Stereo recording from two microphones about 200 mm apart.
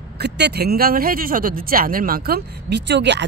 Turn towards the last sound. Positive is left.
turn(degrees=-60)  # may be behind; listen again after turning